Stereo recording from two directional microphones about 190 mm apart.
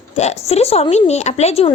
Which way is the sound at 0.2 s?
35° left (ahead or behind).